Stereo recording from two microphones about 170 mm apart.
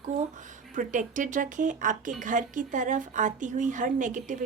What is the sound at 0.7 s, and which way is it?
A woman's voice, 50° right (ahead or behind).